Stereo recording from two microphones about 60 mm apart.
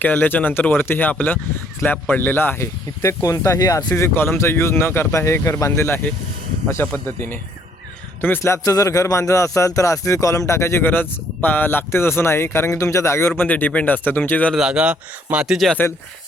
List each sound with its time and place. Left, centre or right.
0.0 s speech: left
2.6 s speech: left
4.1 s speech: left
5.7 s speech: left
6.8 s speech: left
8.4 s speech: left
13.4 s speech: left
14.5 s speech: centre